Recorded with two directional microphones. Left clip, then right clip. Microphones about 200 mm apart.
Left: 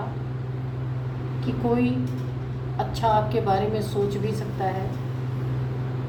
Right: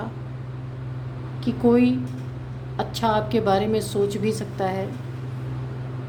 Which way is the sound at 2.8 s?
60° right (ahead or behind).